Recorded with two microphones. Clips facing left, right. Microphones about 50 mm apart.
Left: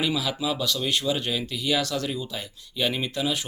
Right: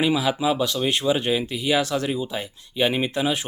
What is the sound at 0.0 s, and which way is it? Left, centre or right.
Speech, right.